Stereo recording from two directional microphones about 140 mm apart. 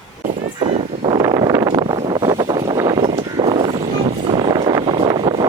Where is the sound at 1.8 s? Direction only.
40° right (ahead or behind).